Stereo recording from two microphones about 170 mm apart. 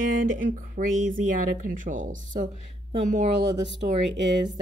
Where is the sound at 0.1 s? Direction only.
55° right (ahead or behind).